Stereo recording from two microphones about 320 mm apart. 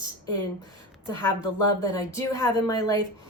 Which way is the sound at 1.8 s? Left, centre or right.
Centre.